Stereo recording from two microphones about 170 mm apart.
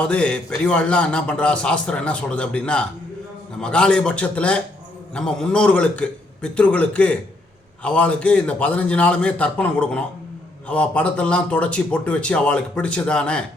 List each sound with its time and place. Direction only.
0.1 s a man's voice: 5° left (ahead or behind)